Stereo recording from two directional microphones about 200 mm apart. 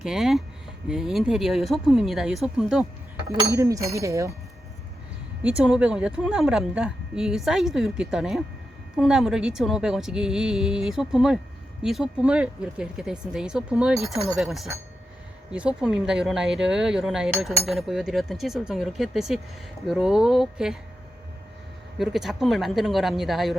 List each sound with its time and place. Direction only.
0.0 s speech: centre (ahead or behind)
3.2 s speech: 15° right (ahead or behind)
5.4 s speech: 5° right (ahead or behind)
21.9 s speech: centre (ahead or behind)